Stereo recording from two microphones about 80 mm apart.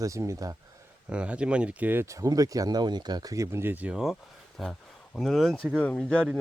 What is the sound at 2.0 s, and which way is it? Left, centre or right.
Speech, right.